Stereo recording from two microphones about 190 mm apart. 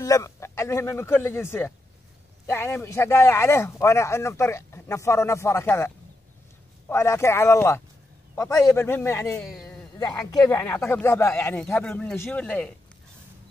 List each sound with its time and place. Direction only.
0.0 s speech: 15° left (ahead or behind)
6.9 s speech: 15° left (ahead or behind)